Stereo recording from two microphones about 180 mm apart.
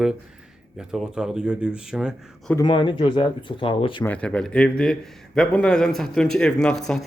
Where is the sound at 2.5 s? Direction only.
25° left (ahead or behind).